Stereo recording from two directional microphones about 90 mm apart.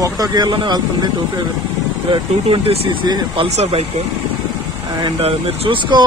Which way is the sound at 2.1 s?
80° right.